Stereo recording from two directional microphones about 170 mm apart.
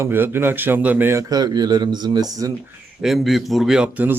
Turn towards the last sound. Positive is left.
turn(degrees=-10)  # may be behind; listen again after turning